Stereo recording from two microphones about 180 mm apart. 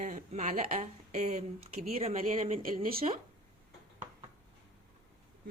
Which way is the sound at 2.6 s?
50° right (ahead or behind).